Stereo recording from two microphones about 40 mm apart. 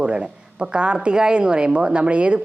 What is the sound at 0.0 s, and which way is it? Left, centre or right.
A woman's voice, right.